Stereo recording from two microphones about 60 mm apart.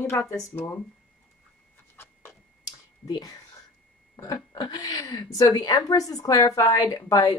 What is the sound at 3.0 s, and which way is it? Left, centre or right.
A woman's voice, left.